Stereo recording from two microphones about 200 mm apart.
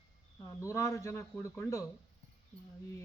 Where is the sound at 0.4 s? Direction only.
15° left (ahead or behind).